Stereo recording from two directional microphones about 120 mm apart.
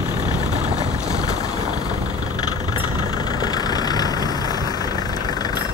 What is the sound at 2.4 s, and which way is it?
Vehicle, 35° left (ahead or behind).